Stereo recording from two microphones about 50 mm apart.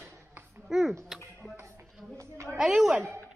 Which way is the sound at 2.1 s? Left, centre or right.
Right.